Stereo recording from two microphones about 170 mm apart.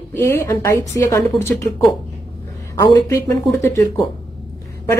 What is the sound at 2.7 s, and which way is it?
Speech, 20° left (ahead or behind).